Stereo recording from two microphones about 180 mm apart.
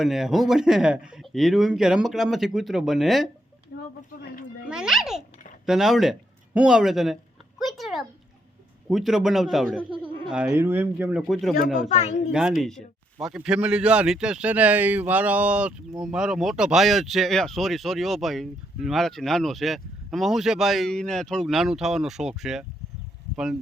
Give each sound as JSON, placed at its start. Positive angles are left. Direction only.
{"t": 0.0, "sound": "a man's voice", "side_deg": 0}
{"t": 4.7, "sound": "a child's voice", "side_deg": -5}
{"t": 7.6, "sound": "a sound", "side_deg": 0}
{"t": 8.9, "sound": "a man's voice", "side_deg": 0}
{"t": 11.9, "sound": "speech", "side_deg": 40}
{"t": 12.3, "sound": "a man's voice", "side_deg": -5}